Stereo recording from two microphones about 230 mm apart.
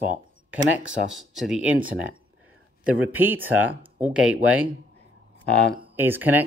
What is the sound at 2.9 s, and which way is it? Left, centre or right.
Speech, centre.